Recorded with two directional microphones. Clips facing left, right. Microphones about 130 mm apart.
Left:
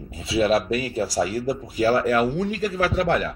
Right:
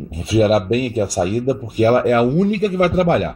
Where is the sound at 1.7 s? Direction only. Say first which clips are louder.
Right 6 dB; 55° right (ahead or behind).